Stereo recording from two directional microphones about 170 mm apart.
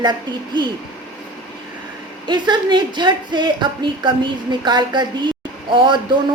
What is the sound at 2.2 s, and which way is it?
A woman's voice, 25° right (ahead or behind).